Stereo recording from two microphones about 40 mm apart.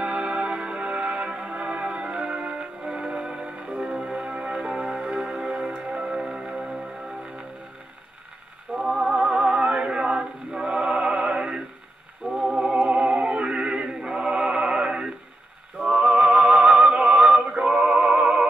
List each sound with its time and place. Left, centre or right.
0.0 s music: right
8.7 s music: centre
9.1 s music: right
12.2 s a sound: centre
12.8 s music: right